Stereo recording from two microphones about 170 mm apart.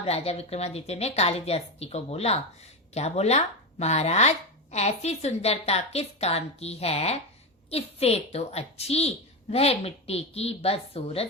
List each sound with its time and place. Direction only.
0.0 s speech: 35° left (ahead or behind)